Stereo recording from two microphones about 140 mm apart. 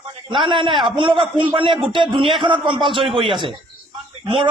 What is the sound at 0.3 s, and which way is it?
A man's voice, 35° right (ahead or behind).